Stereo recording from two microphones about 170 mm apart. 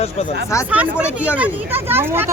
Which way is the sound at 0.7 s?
5° right (ahead or behind).